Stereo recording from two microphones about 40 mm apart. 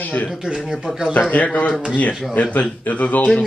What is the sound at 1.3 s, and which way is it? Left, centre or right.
Speech, left.